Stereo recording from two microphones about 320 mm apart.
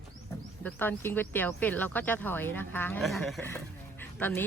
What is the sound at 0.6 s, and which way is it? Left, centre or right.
Speech, centre.